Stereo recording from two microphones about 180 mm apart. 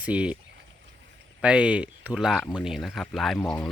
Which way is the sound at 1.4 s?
5° right (ahead or behind).